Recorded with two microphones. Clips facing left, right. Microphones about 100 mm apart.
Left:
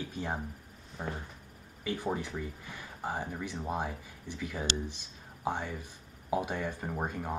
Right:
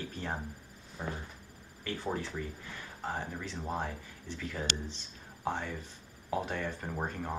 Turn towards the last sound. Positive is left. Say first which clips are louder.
# left 1 dB
turn(degrees=10)  # may be behind; listen again after turning